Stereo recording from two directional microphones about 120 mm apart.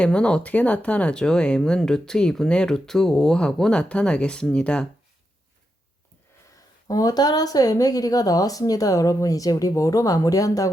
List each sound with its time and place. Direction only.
0.0 s speech: 10° left (ahead or behind)
6.8 s speech: 30° left (ahead or behind)